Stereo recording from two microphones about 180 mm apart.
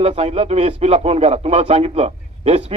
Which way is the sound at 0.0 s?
35° right (ahead or behind).